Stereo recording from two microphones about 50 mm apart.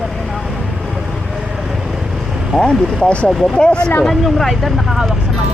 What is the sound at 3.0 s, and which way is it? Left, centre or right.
Speech, left.